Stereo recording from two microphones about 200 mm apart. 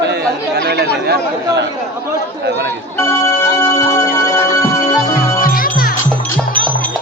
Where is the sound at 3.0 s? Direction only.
15° left (ahead or behind).